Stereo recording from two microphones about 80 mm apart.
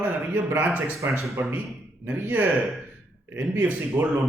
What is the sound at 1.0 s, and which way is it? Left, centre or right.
A man's voice, right.